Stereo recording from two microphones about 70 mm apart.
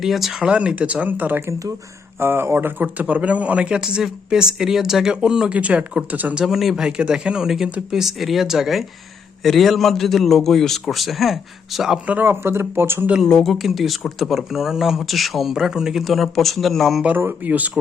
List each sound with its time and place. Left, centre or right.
0.0 s a man's voice: centre; by 6.3 s right
6.3 s speech: centre
12.0 s speech: right
13.4 s speech: centre
17.2 s a man's voice: right